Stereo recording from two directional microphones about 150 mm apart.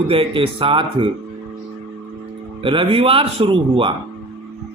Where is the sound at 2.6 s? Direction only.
35° right (ahead or behind).